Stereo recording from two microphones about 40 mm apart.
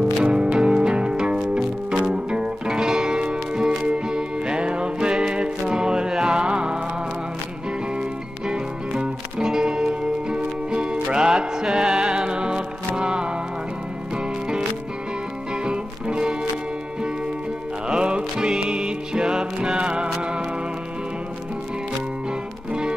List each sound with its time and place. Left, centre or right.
0.2 s music: right
8.5 s music: centre
15.6 s music: right
17.8 s music: right